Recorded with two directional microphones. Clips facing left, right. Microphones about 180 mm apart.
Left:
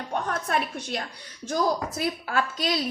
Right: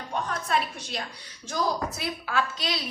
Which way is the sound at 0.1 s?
55° left (ahead or behind).